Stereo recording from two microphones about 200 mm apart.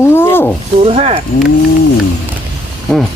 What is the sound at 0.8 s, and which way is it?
Speech, 30° right (ahead or behind).